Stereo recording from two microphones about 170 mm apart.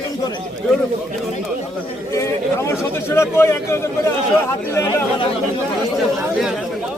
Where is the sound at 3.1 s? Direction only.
15° left (ahead or behind).